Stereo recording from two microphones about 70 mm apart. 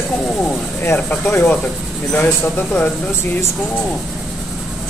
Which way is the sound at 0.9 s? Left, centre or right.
Centre.